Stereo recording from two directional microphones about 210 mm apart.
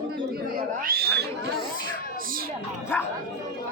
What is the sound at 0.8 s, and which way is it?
Speech, 45° right (ahead or behind).